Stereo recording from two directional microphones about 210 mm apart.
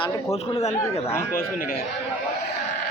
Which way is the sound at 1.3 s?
45° left (ahead or behind).